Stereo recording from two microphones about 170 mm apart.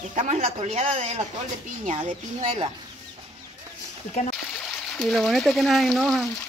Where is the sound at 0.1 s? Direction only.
40° right (ahead or behind).